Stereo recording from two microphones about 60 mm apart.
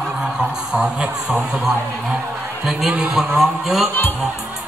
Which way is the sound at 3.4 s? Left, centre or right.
Centre.